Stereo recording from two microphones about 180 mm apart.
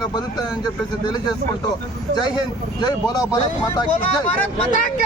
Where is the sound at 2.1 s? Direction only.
25° left (ahead or behind).